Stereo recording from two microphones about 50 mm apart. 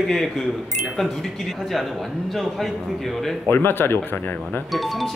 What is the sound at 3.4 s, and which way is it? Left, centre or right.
Speech, left.